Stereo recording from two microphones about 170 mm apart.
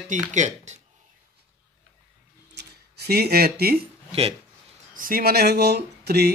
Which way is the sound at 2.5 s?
70° right (ahead or behind).